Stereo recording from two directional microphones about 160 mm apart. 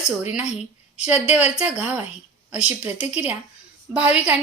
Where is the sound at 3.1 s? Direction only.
10° right (ahead or behind).